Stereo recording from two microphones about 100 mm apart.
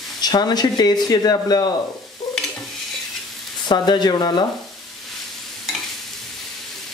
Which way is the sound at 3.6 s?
45° left (ahead or behind).